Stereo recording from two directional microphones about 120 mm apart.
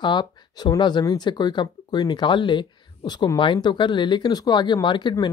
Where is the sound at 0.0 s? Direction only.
40° left (ahead or behind).